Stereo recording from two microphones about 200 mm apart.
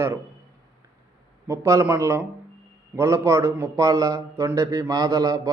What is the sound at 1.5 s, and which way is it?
A man's voice, 15° right (ahead or behind).